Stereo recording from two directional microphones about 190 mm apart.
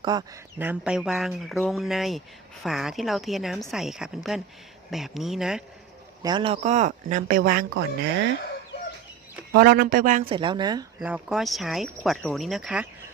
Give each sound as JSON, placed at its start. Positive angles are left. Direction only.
{"t": 0.0, "sound": "speech", "side_deg": -20}
{"t": 0.6, "sound": "speech", "side_deg": -5}
{"t": 6.2, "sound": "speech", "side_deg": -25}
{"t": 9.5, "sound": "speech", "side_deg": -55}
{"t": 10.2, "sound": "speech", "side_deg": -25}
{"t": 11.0, "sound": "speech", "side_deg": -5}